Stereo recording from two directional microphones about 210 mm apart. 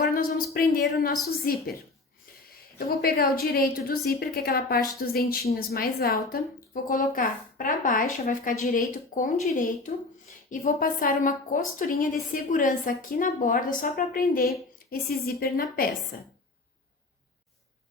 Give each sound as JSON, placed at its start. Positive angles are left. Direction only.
{"t": 0.0, "sound": "a sound", "side_deg": 45}
{"t": 1.5, "sound": "a woman's voice", "side_deg": 45}
{"t": 2.7, "sound": "a woman's voice", "side_deg": 45}